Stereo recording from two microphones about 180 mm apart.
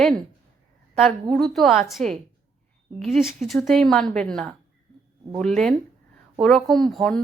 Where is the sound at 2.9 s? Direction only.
35° right (ahead or behind).